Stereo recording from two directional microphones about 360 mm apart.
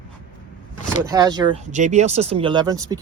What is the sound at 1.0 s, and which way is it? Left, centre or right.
Speech, centre.